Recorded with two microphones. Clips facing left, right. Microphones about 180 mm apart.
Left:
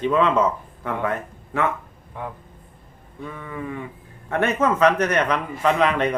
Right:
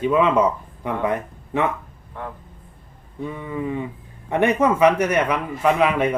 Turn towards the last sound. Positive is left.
turn(degrees=-10)  # may be behind; listen again after turning